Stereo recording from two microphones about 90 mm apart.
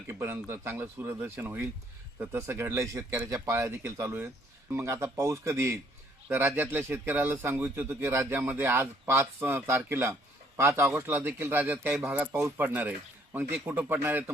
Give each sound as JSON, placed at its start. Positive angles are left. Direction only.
{"t": 0.1, "sound": "speech", "side_deg": -30}